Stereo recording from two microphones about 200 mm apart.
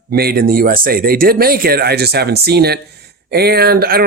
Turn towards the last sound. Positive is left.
turn(degrees=-50)  # may be behind; listen again after turning